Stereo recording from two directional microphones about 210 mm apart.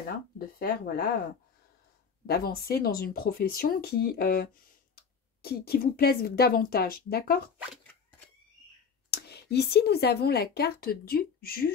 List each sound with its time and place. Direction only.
0.6 s speech: 45° left (ahead or behind)
2.2 s speech: 50° left (ahead or behind)
9.1 s speech: 50° left (ahead or behind)